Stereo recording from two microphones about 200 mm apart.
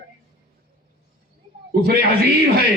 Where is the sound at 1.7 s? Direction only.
50° right (ahead or behind).